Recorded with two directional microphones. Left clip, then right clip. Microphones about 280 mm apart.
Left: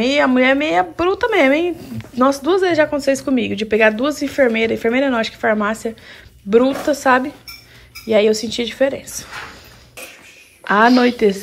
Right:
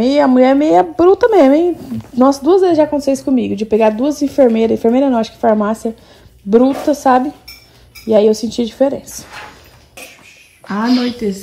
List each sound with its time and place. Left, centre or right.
0.0 s a woman's voice: centre
10.7 s a woman's voice: centre